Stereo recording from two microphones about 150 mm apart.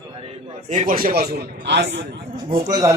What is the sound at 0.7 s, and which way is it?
Speech, 60° right (ahead or behind).